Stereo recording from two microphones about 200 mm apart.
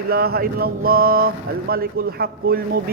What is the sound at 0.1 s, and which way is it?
Speech, 50° right (ahead or behind).